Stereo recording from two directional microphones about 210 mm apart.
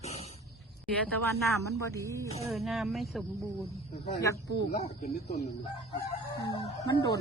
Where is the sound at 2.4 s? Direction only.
Centre (ahead or behind).